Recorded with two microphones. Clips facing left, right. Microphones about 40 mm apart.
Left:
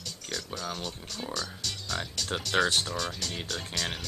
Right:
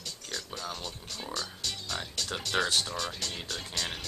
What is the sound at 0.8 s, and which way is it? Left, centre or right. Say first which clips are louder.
Speech: left 2 dB; centre.